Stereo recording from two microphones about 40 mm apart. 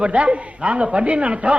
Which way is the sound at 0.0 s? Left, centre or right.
Right.